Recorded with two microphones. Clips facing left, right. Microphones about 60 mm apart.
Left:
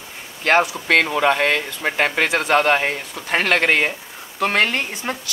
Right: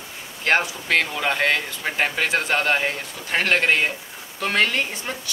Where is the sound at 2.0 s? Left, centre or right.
Left.